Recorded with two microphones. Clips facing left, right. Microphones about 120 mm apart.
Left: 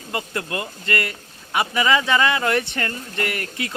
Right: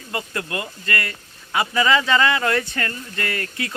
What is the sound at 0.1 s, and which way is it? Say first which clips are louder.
Speech: left 1 dB; 25° left (ahead or behind).